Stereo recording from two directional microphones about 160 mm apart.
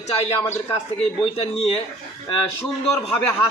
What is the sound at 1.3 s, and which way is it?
Speech, 40° left (ahead or behind).